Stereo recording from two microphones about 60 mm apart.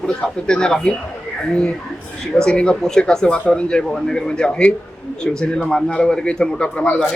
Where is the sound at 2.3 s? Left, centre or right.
Centre.